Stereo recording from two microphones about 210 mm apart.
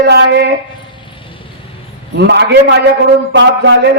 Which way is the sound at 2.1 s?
55° right (ahead or behind).